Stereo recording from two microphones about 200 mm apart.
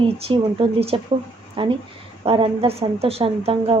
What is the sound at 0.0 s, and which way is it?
A woman's voice, 25° right (ahead or behind).